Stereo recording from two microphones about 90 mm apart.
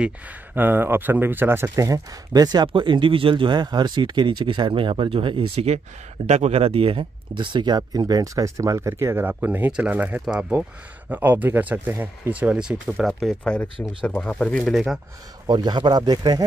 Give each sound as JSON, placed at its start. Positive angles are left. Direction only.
{"t": 0.6, "sound": "speech", "side_deg": -20}
{"t": 1.8, "sound": "a man's voice", "side_deg": -45}
{"t": 2.7, "sound": "speech", "side_deg": -65}
{"t": 12.8, "sound": "speech", "side_deg": 0}
{"t": 13.4, "sound": "speech", "side_deg": 15}
{"t": 15.4, "sound": "a man's voice", "side_deg": -55}